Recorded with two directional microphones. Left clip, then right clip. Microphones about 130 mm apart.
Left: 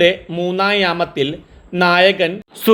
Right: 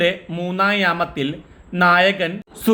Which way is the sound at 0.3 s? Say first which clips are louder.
Left 6 dB; 20° left (ahead or behind).